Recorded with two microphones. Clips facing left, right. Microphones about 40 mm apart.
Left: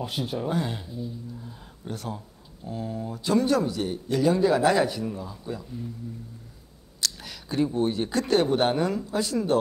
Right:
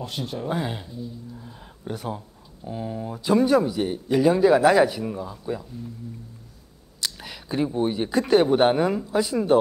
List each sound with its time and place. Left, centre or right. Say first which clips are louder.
0.0 s speech: left 1 dB; centre
0.5 s speech: right 4 dB; centre
0.8 s speech: left 1 dB; centre
1.3 s speech: even; centre
7.0 s speech: even; centre